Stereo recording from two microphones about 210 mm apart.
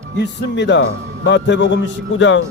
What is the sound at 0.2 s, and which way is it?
Speech, 55° left (ahead or behind).